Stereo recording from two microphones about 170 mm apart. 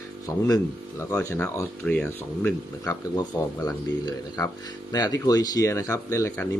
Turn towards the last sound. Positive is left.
turn(degrees=15)  # may be behind; listen again after turning